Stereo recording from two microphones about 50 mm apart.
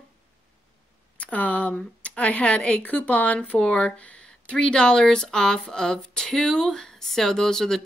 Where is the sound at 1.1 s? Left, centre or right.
Left.